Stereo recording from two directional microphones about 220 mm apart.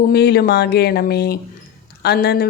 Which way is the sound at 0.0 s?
45° left (ahead or behind).